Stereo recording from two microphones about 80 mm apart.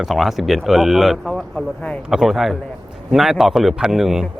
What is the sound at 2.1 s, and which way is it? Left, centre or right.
Speech, centre.